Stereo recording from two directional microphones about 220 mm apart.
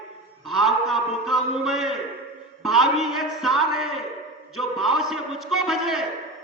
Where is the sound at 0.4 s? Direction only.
Centre (ahead or behind).